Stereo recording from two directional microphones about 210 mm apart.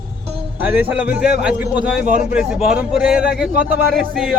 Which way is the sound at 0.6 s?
10° right (ahead or behind).